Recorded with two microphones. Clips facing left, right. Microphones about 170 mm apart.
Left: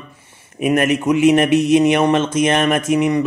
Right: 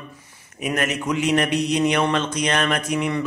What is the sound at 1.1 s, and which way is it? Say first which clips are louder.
A man's voice: left 8 dB; 20° left (ahead or behind).